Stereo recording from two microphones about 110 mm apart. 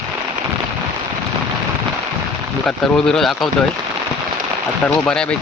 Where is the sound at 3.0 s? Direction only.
5° left (ahead or behind).